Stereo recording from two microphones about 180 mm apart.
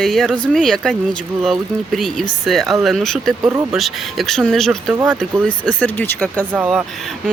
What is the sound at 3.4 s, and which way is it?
Speech, 20° right (ahead or behind).